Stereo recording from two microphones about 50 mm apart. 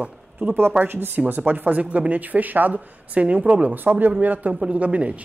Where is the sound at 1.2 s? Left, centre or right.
Right.